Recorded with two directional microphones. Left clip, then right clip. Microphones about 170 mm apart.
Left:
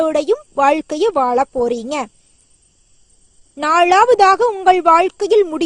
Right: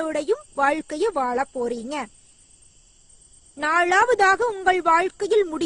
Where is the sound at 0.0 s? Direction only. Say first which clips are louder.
Left 9 dB; 35° left (ahead or behind).